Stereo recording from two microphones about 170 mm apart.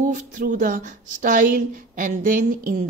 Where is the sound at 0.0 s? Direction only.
50° right (ahead or behind).